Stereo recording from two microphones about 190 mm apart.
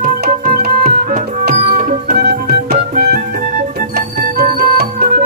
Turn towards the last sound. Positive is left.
turn(degrees=-55)  # may be behind; listen again after turning